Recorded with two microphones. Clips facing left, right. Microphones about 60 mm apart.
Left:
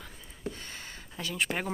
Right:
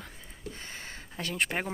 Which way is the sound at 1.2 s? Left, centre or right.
Right.